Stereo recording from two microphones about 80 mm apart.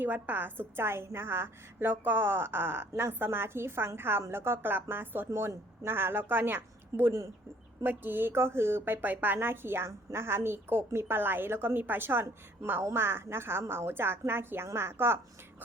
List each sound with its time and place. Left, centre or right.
0.0 s a woman's voice: right